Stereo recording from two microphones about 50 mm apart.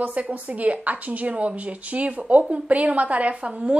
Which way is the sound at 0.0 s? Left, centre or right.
Right.